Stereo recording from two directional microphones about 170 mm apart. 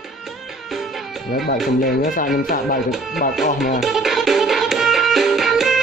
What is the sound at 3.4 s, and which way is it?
Music, 50° left (ahead or behind).